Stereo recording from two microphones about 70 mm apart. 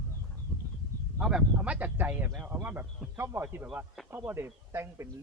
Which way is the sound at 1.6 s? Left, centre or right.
Right.